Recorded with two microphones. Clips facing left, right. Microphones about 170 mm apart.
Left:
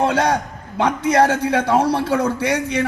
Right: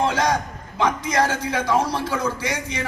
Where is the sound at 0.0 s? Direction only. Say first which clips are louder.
Left 3 dB; 60° left (ahead or behind).